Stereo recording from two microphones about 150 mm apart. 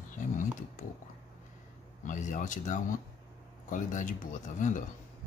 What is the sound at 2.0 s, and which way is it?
Speech, 55° left (ahead or behind).